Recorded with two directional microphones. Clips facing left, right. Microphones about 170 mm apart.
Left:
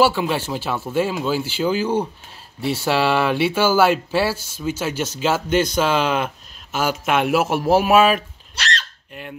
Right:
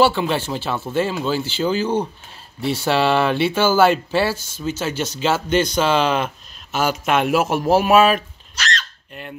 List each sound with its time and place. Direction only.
0.0 s speech: 5° left (ahead or behind)
8.5 s hiccup: 30° left (ahead or behind)